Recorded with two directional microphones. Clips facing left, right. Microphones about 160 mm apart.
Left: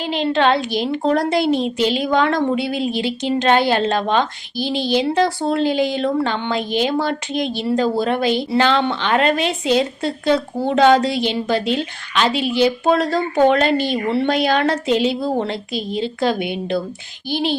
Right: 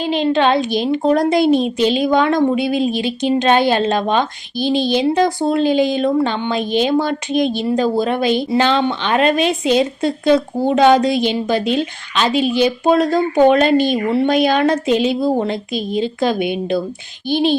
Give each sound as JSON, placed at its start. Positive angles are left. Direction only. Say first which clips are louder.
{"t": 0.0, "sound": "speech", "louder": "right 2 dB", "side_deg": -20}